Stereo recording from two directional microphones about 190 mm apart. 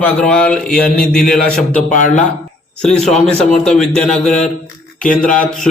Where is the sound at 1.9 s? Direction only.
40° left (ahead or behind).